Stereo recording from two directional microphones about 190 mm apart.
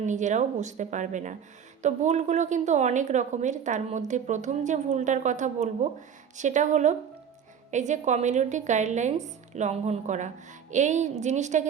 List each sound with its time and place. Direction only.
0.0 s a woman's voice: 40° right (ahead or behind)